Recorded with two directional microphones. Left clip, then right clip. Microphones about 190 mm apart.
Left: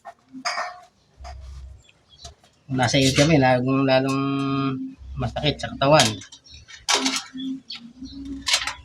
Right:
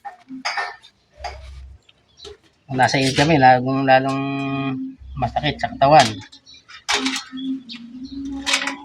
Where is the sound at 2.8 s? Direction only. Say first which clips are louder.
Right 3 dB; 20° left (ahead or behind).